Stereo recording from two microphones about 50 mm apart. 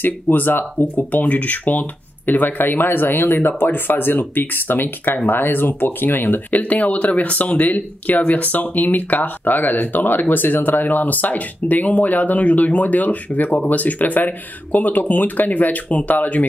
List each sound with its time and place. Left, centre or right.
0.0 s speech: left
6.5 s speech: left